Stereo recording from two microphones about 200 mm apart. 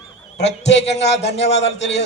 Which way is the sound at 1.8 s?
60° left (ahead or behind).